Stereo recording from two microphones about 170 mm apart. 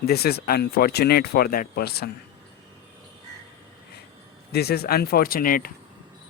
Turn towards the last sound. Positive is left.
turn(degrees=55)  # may be behind; listen again after turning